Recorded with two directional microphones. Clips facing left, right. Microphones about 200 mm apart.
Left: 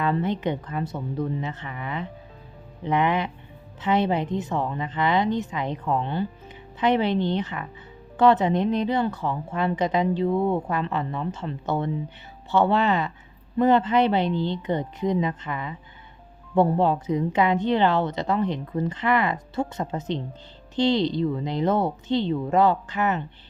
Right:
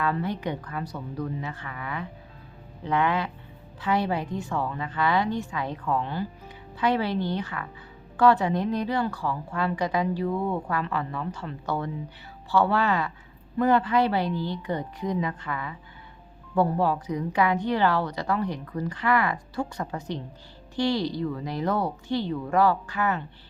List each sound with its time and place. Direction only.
0.0 s a woman's voice: 20° left (ahead or behind)